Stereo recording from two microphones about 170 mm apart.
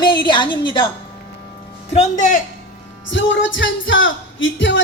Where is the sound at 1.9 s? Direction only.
40° left (ahead or behind).